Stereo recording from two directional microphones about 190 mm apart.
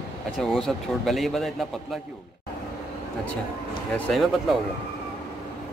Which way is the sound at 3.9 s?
5° left (ahead or behind).